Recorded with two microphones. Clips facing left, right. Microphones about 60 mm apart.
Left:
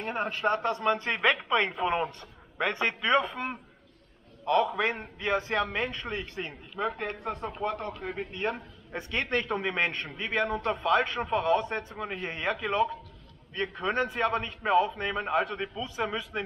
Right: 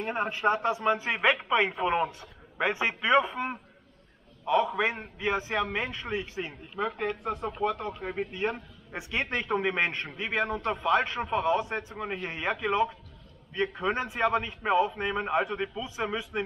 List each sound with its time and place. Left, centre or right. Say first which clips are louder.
0.1 s a man's voice: right 1 dB; centre
6.8 s speech: right 1 dB; centre
7.8 s a man's voice: right 1 dB; centre
8.2 s a man's voice: right 2 dB; centre